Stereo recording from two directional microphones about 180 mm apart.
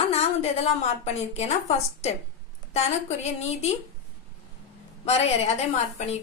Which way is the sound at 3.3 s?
35° left (ahead or behind).